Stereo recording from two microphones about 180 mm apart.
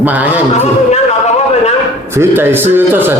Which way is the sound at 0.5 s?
40° left (ahead or behind).